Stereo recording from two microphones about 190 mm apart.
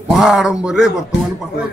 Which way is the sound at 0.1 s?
Centre (ahead or behind).